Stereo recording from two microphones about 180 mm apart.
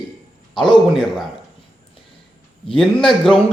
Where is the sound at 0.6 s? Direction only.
5° left (ahead or behind).